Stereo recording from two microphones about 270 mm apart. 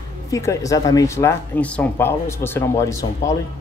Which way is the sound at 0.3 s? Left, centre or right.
Centre.